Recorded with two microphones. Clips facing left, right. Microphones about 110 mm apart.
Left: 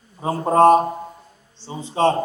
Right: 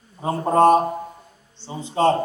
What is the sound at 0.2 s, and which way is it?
Speech, 25° left (ahead or behind).